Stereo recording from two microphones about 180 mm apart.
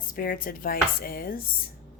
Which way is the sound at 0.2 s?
50° left (ahead or behind).